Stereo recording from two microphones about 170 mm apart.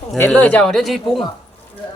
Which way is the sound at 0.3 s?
10° left (ahead or behind).